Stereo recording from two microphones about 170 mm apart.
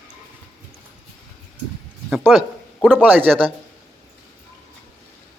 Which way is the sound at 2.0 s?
Centre (ahead or behind).